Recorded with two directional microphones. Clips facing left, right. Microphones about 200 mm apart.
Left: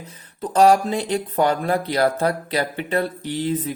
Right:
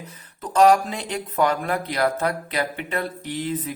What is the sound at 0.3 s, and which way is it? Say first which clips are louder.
Speech: left 1 dB; 30° left (ahead or behind).